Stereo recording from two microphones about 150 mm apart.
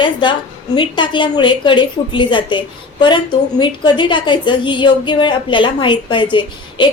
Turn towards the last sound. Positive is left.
turn(degrees=30)  # may be behind; listen again after turning